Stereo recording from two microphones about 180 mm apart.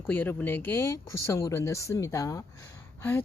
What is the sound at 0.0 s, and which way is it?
Speech, 10° left (ahead or behind).